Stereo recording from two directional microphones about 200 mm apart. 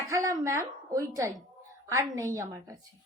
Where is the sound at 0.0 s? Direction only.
15° right (ahead or behind).